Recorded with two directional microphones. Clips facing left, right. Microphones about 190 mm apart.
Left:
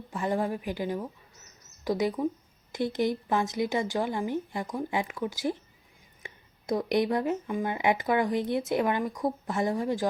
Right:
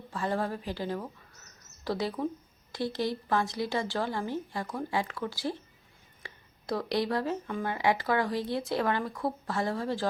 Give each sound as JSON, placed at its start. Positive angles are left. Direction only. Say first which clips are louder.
{"t": 0.1, "sound": "speech", "louder": "left 2 dB", "side_deg": 15}